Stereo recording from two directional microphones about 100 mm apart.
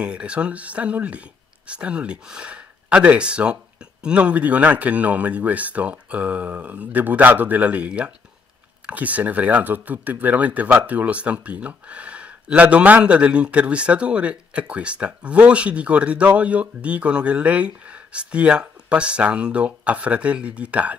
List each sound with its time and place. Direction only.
0.0 s speech: 10° right (ahead or behind)